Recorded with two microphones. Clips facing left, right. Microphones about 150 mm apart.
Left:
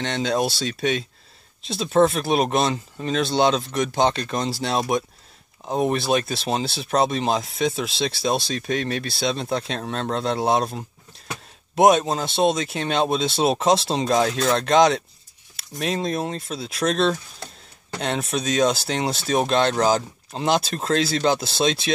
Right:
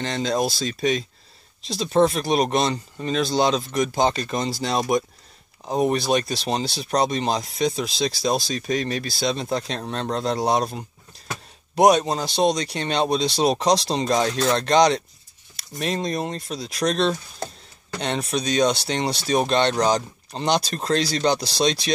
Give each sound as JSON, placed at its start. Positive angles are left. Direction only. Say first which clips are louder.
{"t": 0.0, "sound": "speech", "louder": "even", "side_deg": 0}